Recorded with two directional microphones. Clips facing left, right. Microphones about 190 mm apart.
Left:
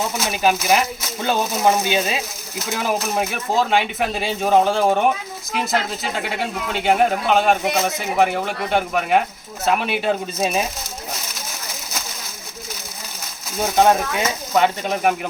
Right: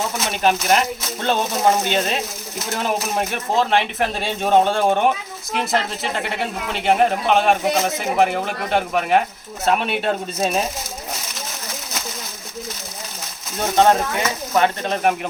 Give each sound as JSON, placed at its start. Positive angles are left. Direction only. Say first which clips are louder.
{"t": 0.3, "sound": "speech", "louder": "even", "side_deg": 5}
{"t": 13.6, "sound": "speech", "louder": "even", "side_deg": 5}
{"t": 14.2, "sound": "speech", "louder": "even", "side_deg": 20}
{"t": 14.8, "sound": "speech", "louder": "even", "side_deg": 5}